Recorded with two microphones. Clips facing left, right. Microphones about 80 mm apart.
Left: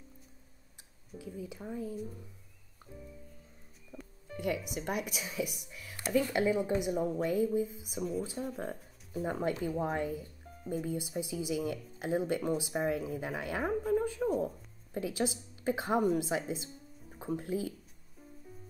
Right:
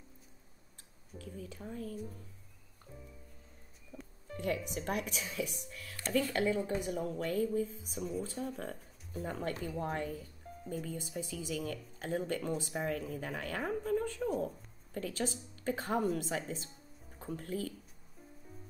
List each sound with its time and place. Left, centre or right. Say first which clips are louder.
1.1 s speech: left 4 dB; centre
3.9 s speech: left 2 dB; centre
9.2 s speech: left 5 dB; centre
10.6 s speech: left 5 dB; centre